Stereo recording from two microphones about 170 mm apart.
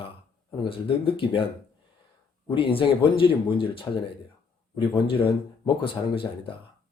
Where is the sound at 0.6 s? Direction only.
35° left (ahead or behind).